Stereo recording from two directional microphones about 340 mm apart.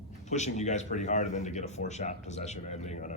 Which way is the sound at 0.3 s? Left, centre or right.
Left.